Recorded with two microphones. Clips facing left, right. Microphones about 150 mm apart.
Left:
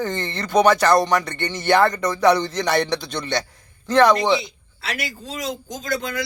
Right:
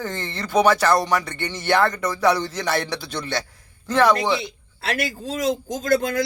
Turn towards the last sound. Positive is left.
turn(degrees=-50)  # may be behind; listen again after turning